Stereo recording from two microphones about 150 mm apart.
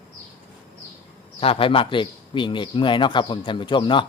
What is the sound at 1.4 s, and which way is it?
A man's voice, 40° left (ahead or behind).